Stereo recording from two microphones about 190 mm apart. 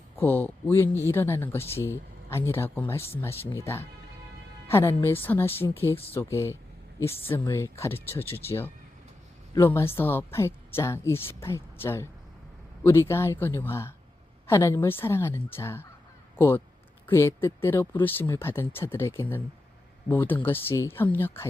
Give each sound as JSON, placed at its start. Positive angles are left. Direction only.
{"t": 0.2, "sound": "a woman's voice", "side_deg": 10}